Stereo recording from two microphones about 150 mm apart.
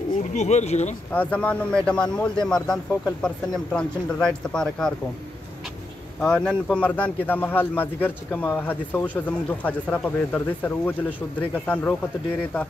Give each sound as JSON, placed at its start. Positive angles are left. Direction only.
{"t": 0.3, "sound": "speech", "side_deg": 50}
{"t": 1.1, "sound": "speech", "side_deg": 10}
{"t": 6.2, "sound": "speech", "side_deg": 5}